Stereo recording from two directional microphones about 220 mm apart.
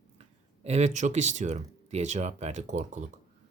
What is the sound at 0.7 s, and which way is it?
Speech, 30° right (ahead or behind).